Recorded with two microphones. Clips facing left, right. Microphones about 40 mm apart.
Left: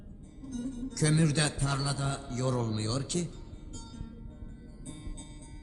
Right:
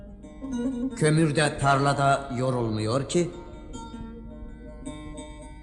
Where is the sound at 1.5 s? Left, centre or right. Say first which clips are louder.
Right 12 dB; right.